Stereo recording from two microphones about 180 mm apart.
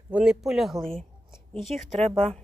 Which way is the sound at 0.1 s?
5° right (ahead or behind).